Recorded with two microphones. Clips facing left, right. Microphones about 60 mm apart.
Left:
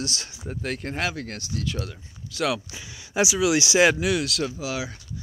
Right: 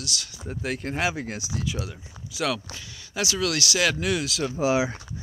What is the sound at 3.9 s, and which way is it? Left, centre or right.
Speech, centre.